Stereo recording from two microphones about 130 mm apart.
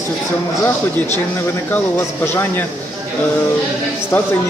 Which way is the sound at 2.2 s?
15° left (ahead or behind).